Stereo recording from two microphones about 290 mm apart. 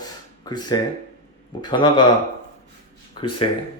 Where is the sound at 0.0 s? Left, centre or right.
Centre.